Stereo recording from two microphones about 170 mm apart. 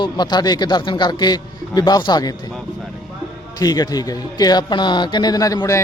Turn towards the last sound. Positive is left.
turn(degrees=20)  # may be behind; listen again after turning